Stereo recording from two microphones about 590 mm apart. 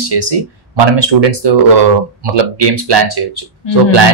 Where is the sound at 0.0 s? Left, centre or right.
Right.